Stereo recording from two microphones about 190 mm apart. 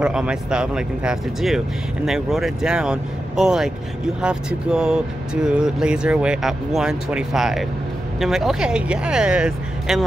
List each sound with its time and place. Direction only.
0.0 s speech: 5° right (ahead or behind)